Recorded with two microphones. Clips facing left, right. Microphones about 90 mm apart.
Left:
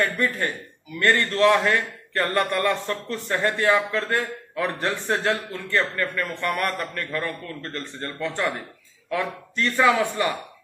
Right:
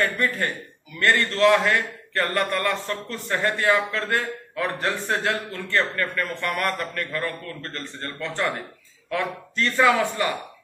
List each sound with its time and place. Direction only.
0.9 s a man's voice: 20° left (ahead or behind)